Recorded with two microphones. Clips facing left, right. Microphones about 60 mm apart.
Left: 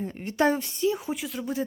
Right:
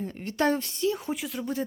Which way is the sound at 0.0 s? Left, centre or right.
Centre.